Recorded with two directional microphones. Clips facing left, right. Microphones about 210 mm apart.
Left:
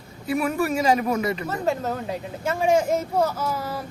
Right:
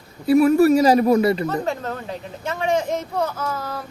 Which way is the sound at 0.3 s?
40° right (ahead or behind).